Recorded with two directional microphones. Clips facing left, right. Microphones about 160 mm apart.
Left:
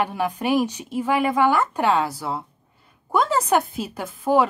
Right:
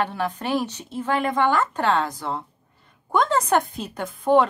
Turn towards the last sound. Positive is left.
turn(degrees=5)  # may be behind; listen again after turning